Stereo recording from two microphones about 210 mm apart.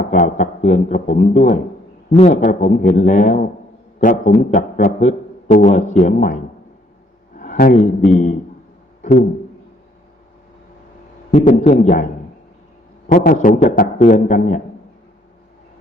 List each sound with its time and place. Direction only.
0.0 s a man's voice: 40° left (ahead or behind)
7.3 s speech: 40° left (ahead or behind)
9.0 s a sound: 40° left (ahead or behind)
11.3 s a man's voice: 30° left (ahead or behind)